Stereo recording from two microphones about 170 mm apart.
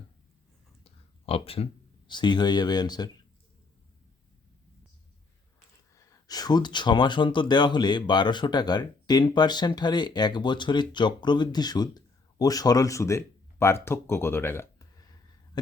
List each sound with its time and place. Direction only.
0.9 s speech: 35° left (ahead or behind)
5.9 s speech: 20° left (ahead or behind)